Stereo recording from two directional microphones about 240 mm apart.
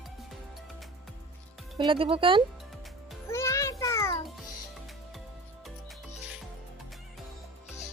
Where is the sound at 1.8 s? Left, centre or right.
Right.